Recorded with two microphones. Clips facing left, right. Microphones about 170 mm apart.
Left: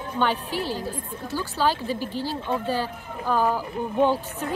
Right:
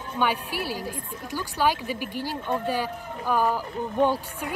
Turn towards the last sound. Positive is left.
turn(degrees=-10)  # may be behind; listen again after turning